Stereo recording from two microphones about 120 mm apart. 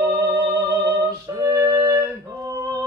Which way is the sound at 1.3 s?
25° right (ahead or behind).